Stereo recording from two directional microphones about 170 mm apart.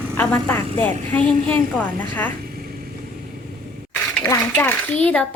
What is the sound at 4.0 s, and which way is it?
A woman's voice, 10° left (ahead or behind).